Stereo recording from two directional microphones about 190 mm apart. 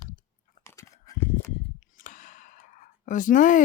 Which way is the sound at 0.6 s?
15° left (ahead or behind).